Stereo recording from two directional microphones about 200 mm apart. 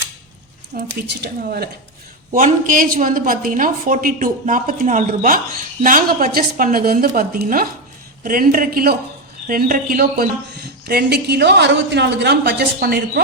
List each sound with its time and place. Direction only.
1.0 s a woman's voice: 50° right (ahead or behind)
2.3 s a woman's voice: 40° right (ahead or behind)